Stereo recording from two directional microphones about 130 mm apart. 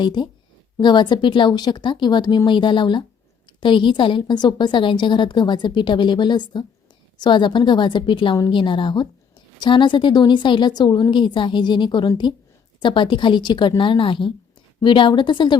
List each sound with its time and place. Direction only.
0.0 s a woman's voice: 35° left (ahead or behind)